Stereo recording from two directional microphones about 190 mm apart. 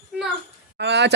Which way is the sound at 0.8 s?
65° right (ahead or behind).